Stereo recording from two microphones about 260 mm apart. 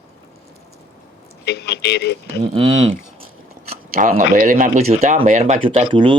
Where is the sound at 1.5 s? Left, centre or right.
Left.